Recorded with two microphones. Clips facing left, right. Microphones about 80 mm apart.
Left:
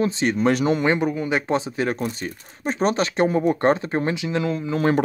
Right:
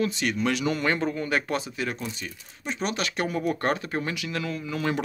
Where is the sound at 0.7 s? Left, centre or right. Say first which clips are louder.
Left 5 dB; centre.